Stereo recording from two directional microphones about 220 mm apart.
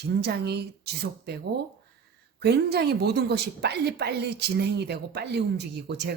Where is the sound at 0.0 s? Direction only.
50° right (ahead or behind).